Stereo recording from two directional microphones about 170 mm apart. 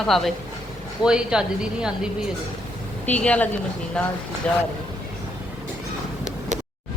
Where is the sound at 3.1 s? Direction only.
5° left (ahead or behind).